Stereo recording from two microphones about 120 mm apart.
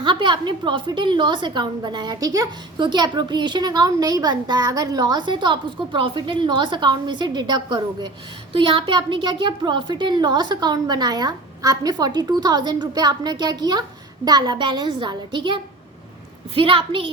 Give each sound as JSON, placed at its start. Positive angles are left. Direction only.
{"t": 0.0, "sound": "a woman's voice", "side_deg": -40}
{"t": 2.7, "sound": "a woman's voice", "side_deg": -40}